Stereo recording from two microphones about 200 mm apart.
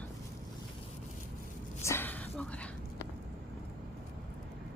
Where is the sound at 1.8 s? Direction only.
10° left (ahead or behind).